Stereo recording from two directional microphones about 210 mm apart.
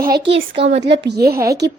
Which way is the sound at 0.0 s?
45° right (ahead or behind).